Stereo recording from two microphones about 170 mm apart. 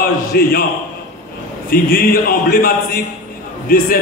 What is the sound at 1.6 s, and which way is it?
Speech, 60° left (ahead or behind).